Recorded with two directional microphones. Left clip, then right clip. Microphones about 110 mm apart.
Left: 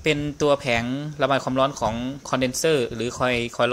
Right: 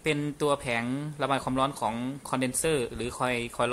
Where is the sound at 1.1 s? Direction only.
15° left (ahead or behind).